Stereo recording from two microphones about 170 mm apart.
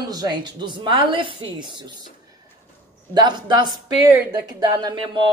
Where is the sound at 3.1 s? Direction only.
25° right (ahead or behind).